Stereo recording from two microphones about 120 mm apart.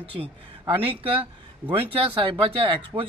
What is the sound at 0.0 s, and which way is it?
Speech, 55° right (ahead or behind).